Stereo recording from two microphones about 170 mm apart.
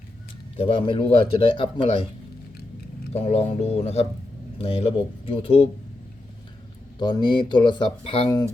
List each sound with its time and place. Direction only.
0.5 s a man's voice: 35° left (ahead or behind)
3.1 s a man's voice: 35° left (ahead or behind)
7.0 s speech: 25° left (ahead or behind)